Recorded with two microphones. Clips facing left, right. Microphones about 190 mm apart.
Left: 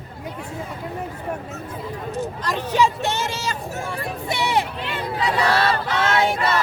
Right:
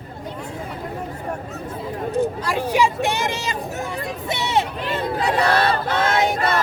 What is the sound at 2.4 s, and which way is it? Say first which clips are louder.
Speech: right 1 dB; 10° right (ahead or behind).